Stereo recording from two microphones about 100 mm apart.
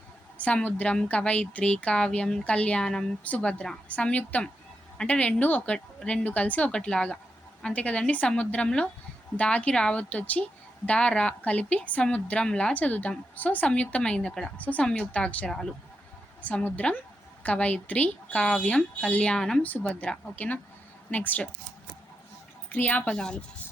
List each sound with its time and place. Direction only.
0.3 s a woman's voice: 15° left (ahead or behind)
16.4 s a woman's voice: 15° left (ahead or behind)
22.7 s a woman's voice: 15° left (ahead or behind)